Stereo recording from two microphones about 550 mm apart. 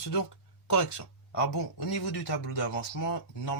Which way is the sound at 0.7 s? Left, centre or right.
Left.